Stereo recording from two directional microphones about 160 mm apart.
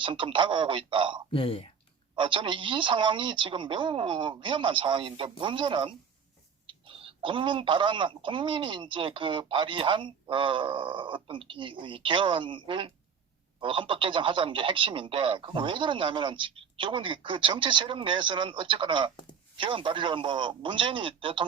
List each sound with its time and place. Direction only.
0.0 s speech: 30° right (ahead or behind)
1.3 s speech: 35° left (ahead or behind)
2.1 s speech: 30° right (ahead or behind)